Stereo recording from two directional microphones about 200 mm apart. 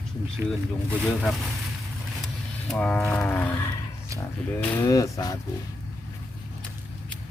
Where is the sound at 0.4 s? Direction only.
10° right (ahead or behind).